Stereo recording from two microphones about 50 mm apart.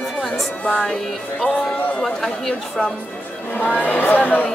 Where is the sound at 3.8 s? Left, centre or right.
Left.